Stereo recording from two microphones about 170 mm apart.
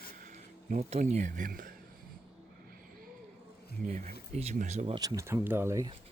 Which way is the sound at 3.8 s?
45° right (ahead or behind).